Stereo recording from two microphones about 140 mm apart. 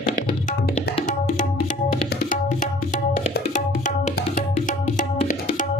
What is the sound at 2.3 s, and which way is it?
Tabla, 65° left (ahead or behind).